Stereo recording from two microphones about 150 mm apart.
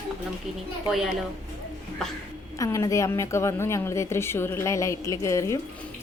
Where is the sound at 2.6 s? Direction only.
20° left (ahead or behind).